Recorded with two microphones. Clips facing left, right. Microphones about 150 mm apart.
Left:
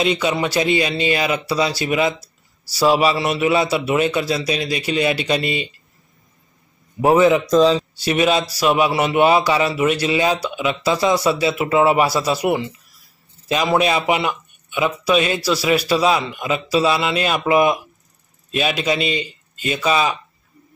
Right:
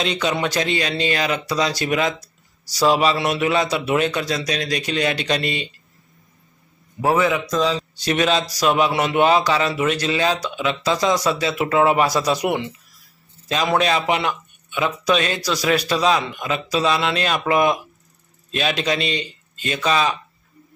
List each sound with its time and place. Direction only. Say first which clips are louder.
0.0 s speech: left 3 dB; 5° left (ahead or behind)
7.0 s a man's voice: left 5 dB; 20° left (ahead or behind)
8.0 s speech: even; 10° left (ahead or behind)